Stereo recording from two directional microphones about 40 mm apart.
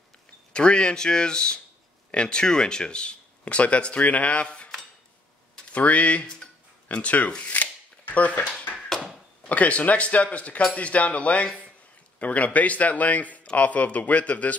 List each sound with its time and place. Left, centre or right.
0.5 s speech: left
5.7 s speech: left
7.3 s shuffling cards: left
8.8 s a sound: centre
9.5 s speech: left